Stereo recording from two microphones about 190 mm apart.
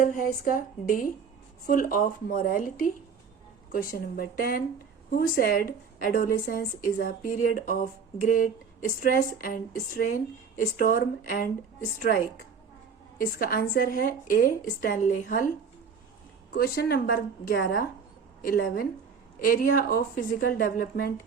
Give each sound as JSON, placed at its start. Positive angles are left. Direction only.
{"t": 0.0, "sound": "a woman's voice", "side_deg": 45}
{"t": 13.1, "sound": "a woman's voice", "side_deg": 50}
{"t": 16.5, "sound": "a woman's voice", "side_deg": 55}